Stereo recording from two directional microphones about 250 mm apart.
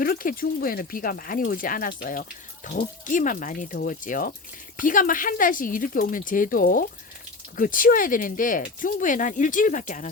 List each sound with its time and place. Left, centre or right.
0.0 s speech: left